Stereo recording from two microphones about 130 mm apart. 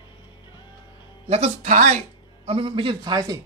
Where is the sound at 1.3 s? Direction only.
60° right (ahead or behind); by 3.3 s 30° right (ahead or behind).